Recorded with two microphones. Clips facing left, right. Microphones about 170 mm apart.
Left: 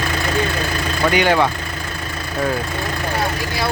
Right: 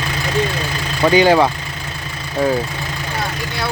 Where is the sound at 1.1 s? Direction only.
30° right (ahead or behind).